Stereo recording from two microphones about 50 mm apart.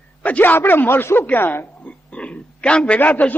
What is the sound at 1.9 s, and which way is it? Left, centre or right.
Oink, left.